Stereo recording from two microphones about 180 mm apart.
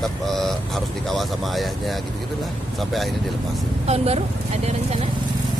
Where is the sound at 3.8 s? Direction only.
35° right (ahead or behind).